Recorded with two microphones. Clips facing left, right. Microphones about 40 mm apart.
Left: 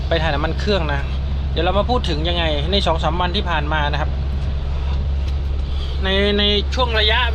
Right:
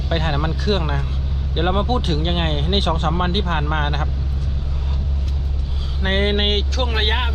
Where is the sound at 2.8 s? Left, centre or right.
Left.